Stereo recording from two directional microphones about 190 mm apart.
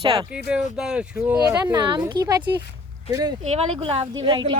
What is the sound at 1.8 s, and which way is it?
Speech, 25° right (ahead or behind).